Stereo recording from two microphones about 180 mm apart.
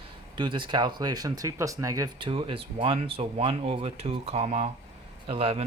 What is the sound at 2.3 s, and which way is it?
Speech, 30° right (ahead or behind).